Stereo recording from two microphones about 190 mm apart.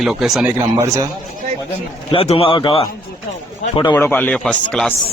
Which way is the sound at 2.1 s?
30° left (ahead or behind).